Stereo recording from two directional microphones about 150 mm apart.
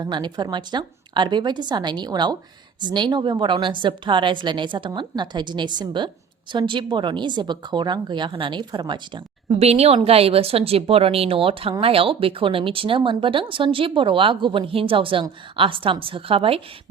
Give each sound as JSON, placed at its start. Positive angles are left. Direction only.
{"t": 0.0, "sound": "a woman's voice", "side_deg": -30}
{"t": 9.6, "sound": "speech", "side_deg": -45}